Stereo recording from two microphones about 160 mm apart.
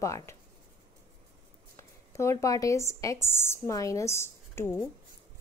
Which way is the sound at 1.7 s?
20° left (ahead or behind).